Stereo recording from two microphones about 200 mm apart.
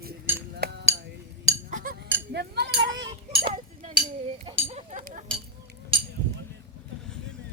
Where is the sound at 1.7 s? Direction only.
45° right (ahead or behind).